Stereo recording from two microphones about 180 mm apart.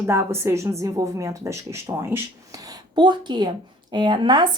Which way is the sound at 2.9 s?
25° right (ahead or behind).